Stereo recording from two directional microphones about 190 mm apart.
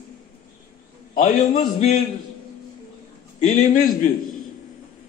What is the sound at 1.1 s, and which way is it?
Speech, 45° left (ahead or behind).